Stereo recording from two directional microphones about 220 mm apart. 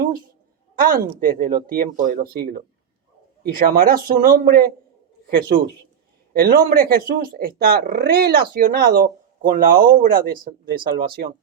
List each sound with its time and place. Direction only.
0.8 s a man's voice: 40° right (ahead or behind)